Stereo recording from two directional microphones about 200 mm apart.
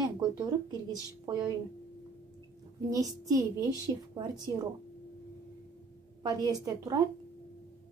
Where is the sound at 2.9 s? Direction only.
15° right (ahead or behind).